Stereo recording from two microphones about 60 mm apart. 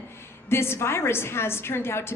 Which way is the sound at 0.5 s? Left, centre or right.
Left.